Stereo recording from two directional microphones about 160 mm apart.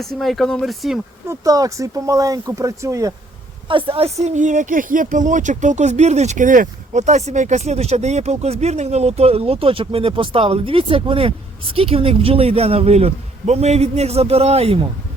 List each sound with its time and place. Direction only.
0.0 s speech: centre (ahead or behind)
1.3 s speech: 20° right (ahead or behind)
3.7 s speech: 35° right (ahead or behind)